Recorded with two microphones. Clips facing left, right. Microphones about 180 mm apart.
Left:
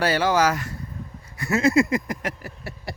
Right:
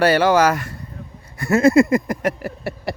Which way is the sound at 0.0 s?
65° right (ahead or behind).